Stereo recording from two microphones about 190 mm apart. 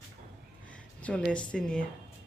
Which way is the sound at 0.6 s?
5° left (ahead or behind).